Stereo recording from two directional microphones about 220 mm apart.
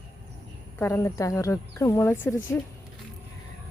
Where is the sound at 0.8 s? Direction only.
10° left (ahead or behind).